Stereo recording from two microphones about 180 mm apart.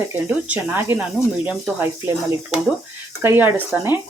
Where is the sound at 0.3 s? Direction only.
10° right (ahead or behind).